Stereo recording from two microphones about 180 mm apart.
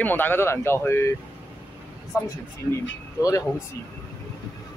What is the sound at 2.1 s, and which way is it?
Speech, 15° left (ahead or behind).